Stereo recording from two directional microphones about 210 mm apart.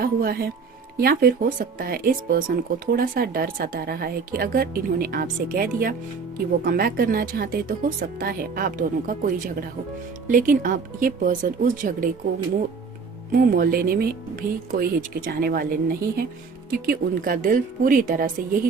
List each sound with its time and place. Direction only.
0.0 s a woman's voice: 45° right (ahead or behind)
13.4 s a woman's voice: 45° right (ahead or behind)